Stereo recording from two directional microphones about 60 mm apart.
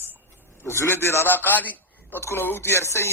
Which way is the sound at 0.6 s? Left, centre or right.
Left.